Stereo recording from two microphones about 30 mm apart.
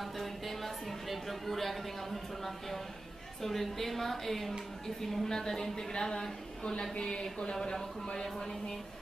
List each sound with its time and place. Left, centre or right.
0.0 s a sound: centre
3.4 s a woman's voice: centre
5.3 s speech: left
8.2 s a woman's voice: centre